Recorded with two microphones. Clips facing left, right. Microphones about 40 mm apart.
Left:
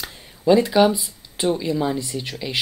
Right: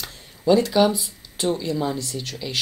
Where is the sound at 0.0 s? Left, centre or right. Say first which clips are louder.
Left 2 dB; centre.